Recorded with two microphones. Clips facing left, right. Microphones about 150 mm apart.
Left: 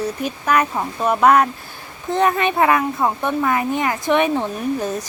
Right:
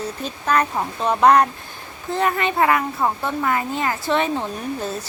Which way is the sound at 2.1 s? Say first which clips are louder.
Left 3 dB; 20° left (ahead or behind).